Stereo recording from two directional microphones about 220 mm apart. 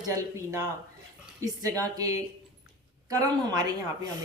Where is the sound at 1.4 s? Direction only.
15° right (ahead or behind).